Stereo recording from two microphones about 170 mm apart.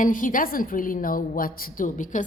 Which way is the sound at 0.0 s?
50° left (ahead or behind).